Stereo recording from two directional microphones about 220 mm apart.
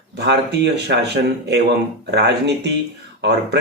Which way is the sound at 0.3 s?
50° right (ahead or behind).